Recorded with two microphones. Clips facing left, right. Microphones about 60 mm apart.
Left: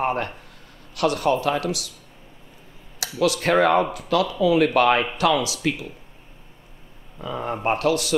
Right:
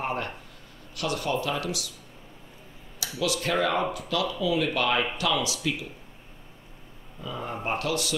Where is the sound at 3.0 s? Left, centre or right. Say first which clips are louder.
Left 7 dB; left.